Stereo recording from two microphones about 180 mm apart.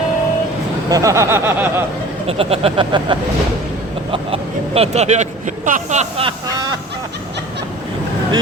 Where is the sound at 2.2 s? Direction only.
30° right (ahead or behind).